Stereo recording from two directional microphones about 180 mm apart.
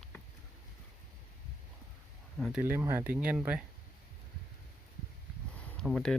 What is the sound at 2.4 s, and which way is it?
Speech, centre (ahead or behind).